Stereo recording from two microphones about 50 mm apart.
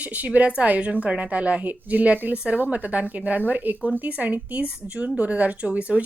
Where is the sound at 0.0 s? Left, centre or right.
Right.